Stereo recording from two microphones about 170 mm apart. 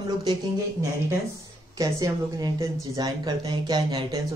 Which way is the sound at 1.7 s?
20° right (ahead or behind).